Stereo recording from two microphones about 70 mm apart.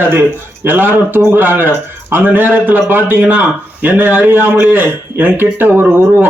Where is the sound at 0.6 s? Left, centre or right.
Right.